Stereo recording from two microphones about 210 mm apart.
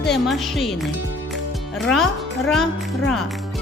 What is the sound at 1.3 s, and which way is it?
Music, centre (ahead or behind).